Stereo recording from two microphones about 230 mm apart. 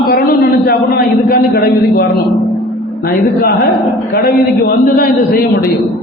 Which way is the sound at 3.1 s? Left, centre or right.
Left.